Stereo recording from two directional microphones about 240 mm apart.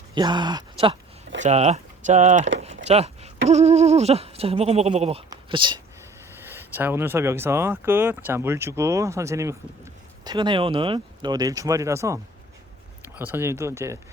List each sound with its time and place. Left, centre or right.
0.1 s speech: centre
2.6 s a sound: right
3.5 s goat: right
6.4 s speech: centre